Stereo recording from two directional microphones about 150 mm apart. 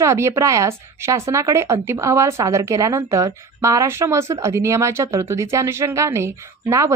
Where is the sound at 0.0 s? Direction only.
20° right (ahead or behind).